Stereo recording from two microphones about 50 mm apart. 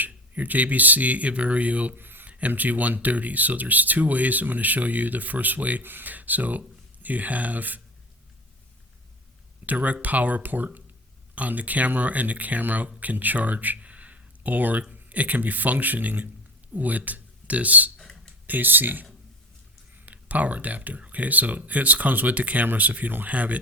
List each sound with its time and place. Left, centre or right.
0.1 s speech: right
2.0 s a sound: right
2.5 s speech: right
9.6 s speech: right
17.9 s a sound: centre
18.4 s speech: right
20.1 s speech: right